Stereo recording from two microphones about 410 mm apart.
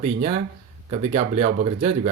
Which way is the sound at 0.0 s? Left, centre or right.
Centre.